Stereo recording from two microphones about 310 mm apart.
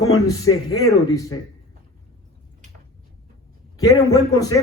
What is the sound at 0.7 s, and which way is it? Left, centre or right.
Speech, centre.